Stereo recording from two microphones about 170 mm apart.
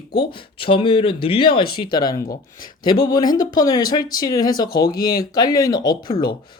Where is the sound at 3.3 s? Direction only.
25° left (ahead or behind).